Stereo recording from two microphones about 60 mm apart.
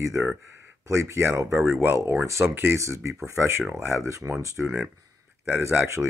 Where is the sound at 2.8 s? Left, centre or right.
Right.